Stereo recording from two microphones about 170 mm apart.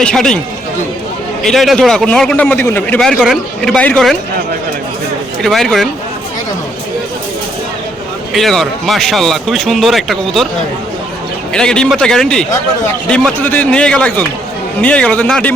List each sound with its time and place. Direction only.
0.0 s a man's voice: 5° left (ahead or behind)
1.4 s a man's voice: centre (ahead or behind)
5.4 s a man's voice: centre (ahead or behind)
8.3 s a man's voice: centre (ahead or behind)
11.5 s a man's voice: 5° left (ahead or behind)